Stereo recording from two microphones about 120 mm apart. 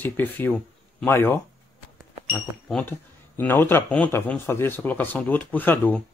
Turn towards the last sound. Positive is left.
turn(degrees=15)  # may be behind; listen again after turning